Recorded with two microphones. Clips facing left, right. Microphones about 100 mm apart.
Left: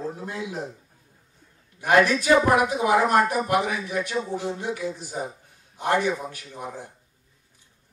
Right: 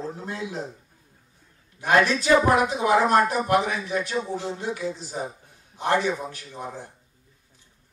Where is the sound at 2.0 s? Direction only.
15° left (ahead or behind).